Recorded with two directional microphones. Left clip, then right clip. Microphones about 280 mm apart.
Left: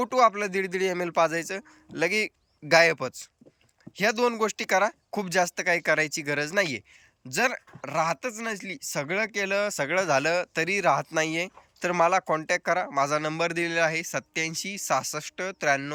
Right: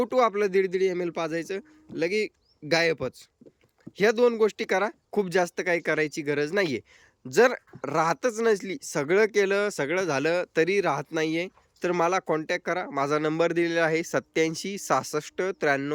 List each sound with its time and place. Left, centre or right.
0.0 s speech: centre